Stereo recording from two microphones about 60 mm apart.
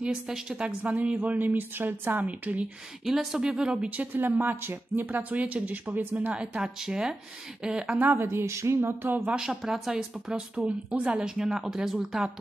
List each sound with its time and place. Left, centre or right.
0.0 s speech: centre
0.7 s a woman's voice: right
3.1 s speech: centre
3.9 s a woman's voice: right
5.3 s a woman's voice: right
6.3 s a woman's voice: centre
8.2 s speech: right
8.8 s speech: right
9.3 s speech: centre